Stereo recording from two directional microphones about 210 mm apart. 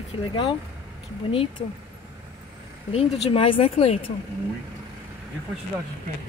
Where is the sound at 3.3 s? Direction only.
25° left (ahead or behind).